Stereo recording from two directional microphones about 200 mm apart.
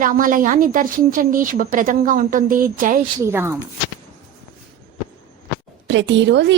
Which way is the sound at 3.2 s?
10° right (ahead or behind).